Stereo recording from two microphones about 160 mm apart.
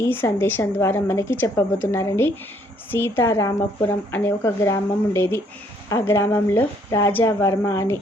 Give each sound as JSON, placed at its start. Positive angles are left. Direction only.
{"t": 0.0, "sound": "speech", "side_deg": 15}